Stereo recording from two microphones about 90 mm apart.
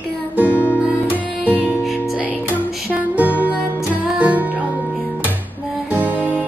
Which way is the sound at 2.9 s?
15° right (ahead or behind).